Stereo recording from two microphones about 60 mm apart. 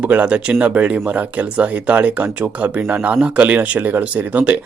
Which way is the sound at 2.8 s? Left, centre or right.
Right.